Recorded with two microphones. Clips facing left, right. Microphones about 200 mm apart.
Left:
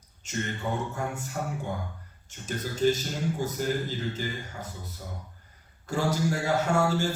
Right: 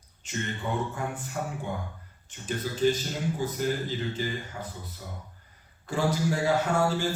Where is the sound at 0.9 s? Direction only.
45° left (ahead or behind).